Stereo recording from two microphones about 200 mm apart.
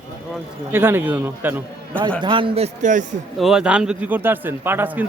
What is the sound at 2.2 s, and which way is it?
Speech, 25° right (ahead or behind).